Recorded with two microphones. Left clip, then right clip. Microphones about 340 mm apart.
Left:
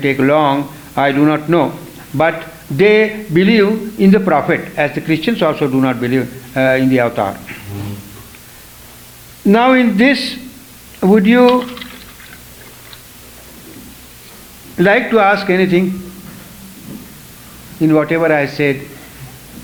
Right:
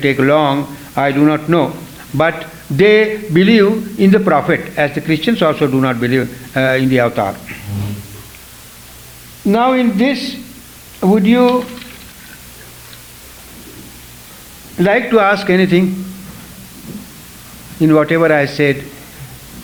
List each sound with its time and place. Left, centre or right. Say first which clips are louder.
0.0 s a man's voice: even; right
2.7 s a man's voice: right 1 dB; right
9.5 s a man's voice: left 2 dB; centre
14.8 s a man's voice: left 1 dB; right
17.7 s a man's voice: right 2 dB; right